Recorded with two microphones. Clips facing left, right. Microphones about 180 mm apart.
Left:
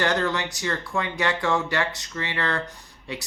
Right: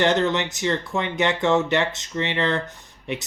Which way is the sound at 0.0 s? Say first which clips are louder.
Right 4 dB; 20° right (ahead or behind).